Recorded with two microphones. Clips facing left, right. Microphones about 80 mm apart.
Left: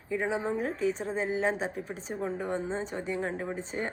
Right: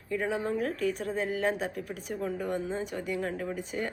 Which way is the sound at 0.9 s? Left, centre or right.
Left.